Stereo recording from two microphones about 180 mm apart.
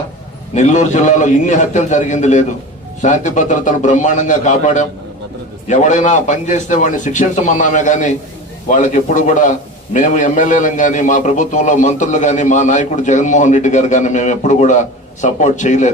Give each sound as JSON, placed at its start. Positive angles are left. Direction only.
{"t": 0.5, "sound": "a man's voice", "side_deg": 40}